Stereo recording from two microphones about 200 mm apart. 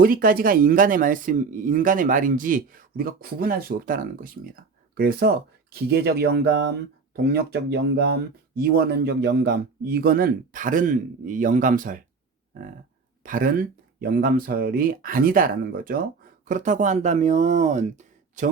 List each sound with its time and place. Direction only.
0.0 s speech: 45° right (ahead or behind)
13.2 s speech: 45° right (ahead or behind)